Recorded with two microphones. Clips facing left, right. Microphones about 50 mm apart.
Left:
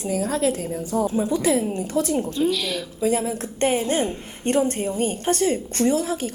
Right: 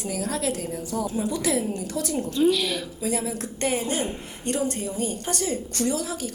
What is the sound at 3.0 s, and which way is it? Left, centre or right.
A woman's voice, left.